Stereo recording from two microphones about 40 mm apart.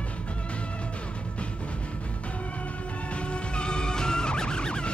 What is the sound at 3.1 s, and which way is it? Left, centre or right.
Music, left.